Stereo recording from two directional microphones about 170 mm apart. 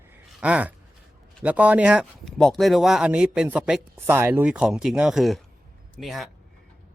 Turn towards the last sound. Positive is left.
turn(degrees=0)  # may be behind; listen again after turning